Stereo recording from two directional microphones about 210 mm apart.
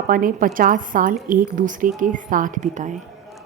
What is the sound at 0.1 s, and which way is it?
A woman's voice, 40° right (ahead or behind).